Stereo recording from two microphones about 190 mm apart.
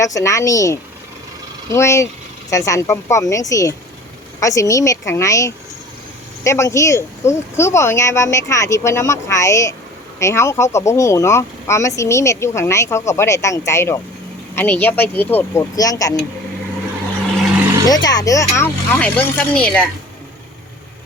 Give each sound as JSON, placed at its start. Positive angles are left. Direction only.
{"t": 0.0, "sound": "speech", "side_deg": 15}
{"t": 17.8, "sound": "speech", "side_deg": 20}